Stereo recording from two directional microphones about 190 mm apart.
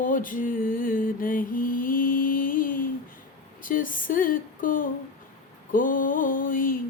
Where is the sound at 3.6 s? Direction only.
45° left (ahead or behind).